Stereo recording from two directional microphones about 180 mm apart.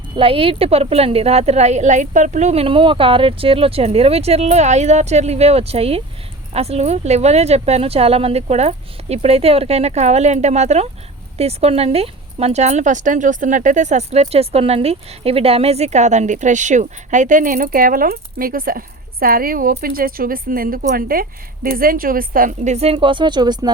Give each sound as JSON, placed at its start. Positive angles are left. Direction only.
{"t": 0.2, "sound": "a woman's voice", "side_deg": -30}